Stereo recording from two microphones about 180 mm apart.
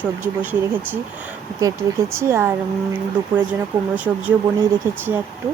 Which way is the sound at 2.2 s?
15° right (ahead or behind).